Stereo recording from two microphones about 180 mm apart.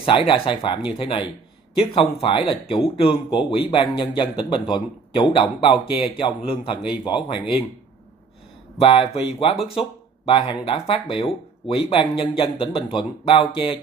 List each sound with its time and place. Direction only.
0.0 s a man's voice: 30° left (ahead or behind)
8.7 s speech: 30° left (ahead or behind)